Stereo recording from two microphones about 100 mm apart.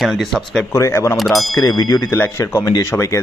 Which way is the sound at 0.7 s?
30° left (ahead or behind).